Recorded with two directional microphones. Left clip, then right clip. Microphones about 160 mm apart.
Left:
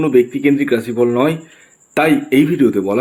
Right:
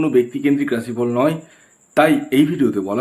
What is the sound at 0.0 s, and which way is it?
Speech, 20° left (ahead or behind).